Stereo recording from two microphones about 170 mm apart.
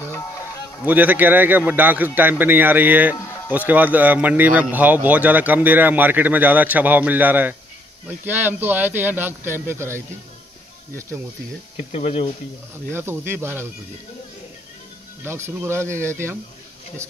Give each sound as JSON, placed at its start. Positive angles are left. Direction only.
{"t": 0.8, "sound": "speech", "side_deg": -10}
{"t": 11.7, "sound": "speech", "side_deg": 35}
{"t": 12.9, "sound": "speech", "side_deg": -15}
{"t": 15.2, "sound": "speech", "side_deg": -15}